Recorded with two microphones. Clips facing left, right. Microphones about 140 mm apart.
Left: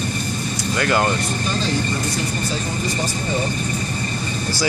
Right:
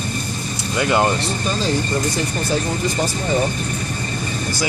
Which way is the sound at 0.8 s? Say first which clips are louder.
Right 2 dB; 20° right (ahead or behind).